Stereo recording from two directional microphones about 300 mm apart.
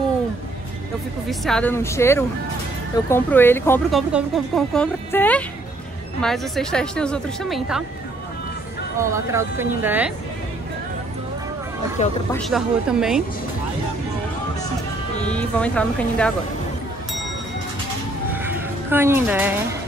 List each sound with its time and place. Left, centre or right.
1.4 s a woman's voice: centre
9.0 s speech: centre
12.3 s a woman's voice: centre
15.2 s a woman's voice: centre
18.3 s music: centre